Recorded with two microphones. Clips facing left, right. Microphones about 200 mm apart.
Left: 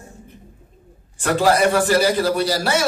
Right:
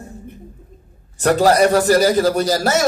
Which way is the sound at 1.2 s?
40° right (ahead or behind).